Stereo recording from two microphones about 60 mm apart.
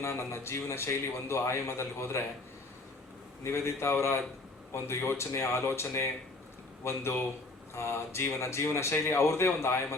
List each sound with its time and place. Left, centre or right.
0.0 s speech: left
3.4 s speech: left